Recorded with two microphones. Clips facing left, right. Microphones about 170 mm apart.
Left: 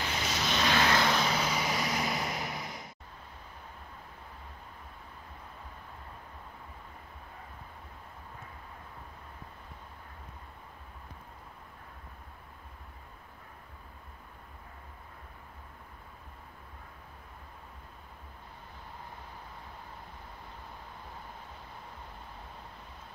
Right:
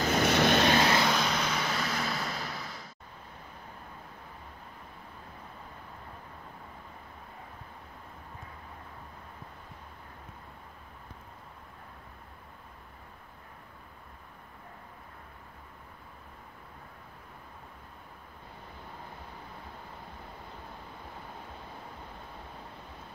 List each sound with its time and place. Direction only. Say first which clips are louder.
0.0 s vehicle: right 9 dB; 50° right (ahead or behind)
0.8 s vehicle: right 1 dB; 5° right (ahead or behind); by 2.9 s 20° left (ahead or behind)